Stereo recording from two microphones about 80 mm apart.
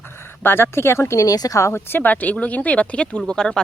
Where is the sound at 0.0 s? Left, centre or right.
Left.